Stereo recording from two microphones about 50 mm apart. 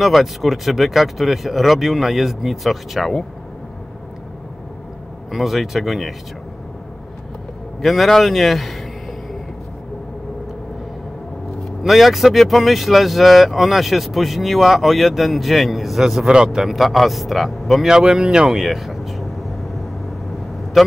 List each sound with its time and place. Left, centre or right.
0.0 s speech: centre
5.3 s speech: centre
7.8 s speech: centre
11.8 s speech: centre
17.8 s speech: centre
18.6 s speech: centre
20.8 s speech: centre